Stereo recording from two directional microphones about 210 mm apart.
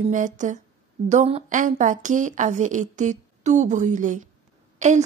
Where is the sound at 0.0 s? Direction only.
35° right (ahead or behind).